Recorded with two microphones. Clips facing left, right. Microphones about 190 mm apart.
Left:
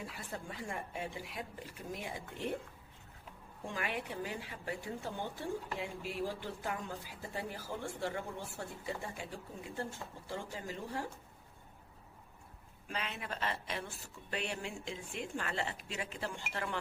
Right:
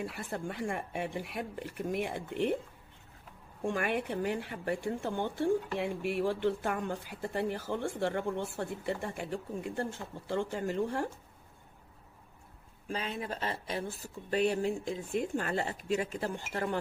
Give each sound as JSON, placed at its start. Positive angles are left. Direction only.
{"t": 0.0, "sound": "speech", "side_deg": -60}
{"t": 3.7, "sound": "speech", "side_deg": -60}
{"t": 12.9, "sound": "speech", "side_deg": -30}